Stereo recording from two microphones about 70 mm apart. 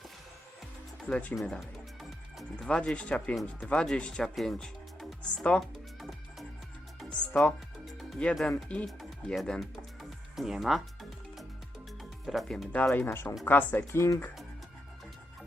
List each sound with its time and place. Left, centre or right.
1.0 s speech: centre
1.4 s speech: centre
2.6 s speech: centre
4.5 s music: centre
7.1 s music: centre
7.9 s music: centre
8.2 s speech: centre
9.3 s speech: centre
12.2 s speech: centre
12.7 s speech: left